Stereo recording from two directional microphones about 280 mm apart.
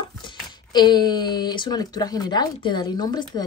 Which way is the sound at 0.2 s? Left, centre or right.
Centre.